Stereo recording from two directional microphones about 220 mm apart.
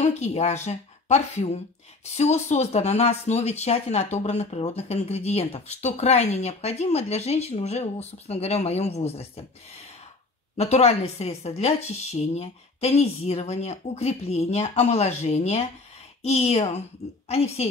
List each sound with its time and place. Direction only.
0.0 s speech: 30° left (ahead or behind)
10.6 s speech: 30° left (ahead or behind)